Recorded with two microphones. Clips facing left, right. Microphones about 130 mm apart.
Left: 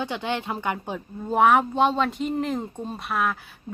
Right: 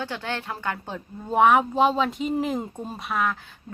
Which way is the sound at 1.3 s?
Centre (ahead or behind).